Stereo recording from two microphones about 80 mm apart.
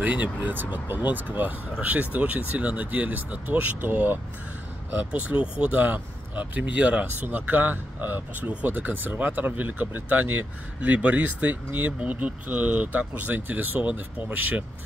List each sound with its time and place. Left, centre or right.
0.0 s speech: centre